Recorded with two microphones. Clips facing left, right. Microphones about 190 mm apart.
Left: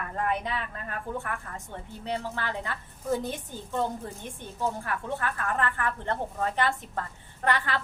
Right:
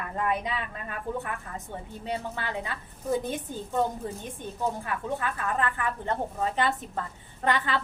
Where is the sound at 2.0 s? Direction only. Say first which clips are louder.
Left 1 dB; 20° right (ahead or behind).